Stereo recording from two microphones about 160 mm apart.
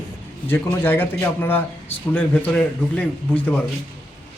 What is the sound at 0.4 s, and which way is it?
Speech, 15° left (ahead or behind).